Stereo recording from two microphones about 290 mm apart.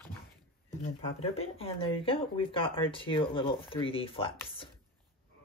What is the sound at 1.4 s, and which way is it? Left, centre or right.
Speech, centre.